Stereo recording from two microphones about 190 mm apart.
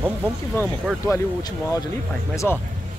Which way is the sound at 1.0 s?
20° left (ahead or behind).